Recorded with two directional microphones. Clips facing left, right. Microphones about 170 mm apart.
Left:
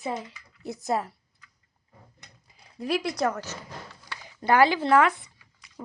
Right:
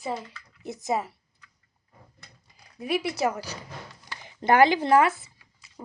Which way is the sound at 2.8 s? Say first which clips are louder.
Even; centre (ahead or behind).